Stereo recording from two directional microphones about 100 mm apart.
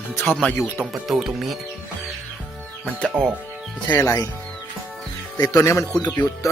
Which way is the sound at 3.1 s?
20° right (ahead or behind).